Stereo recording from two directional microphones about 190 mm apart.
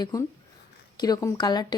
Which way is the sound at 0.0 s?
20° left (ahead or behind).